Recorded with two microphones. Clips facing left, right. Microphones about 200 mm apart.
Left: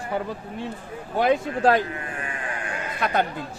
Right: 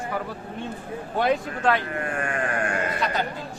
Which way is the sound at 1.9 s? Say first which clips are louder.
Right 5 dB; 55° right (ahead or behind).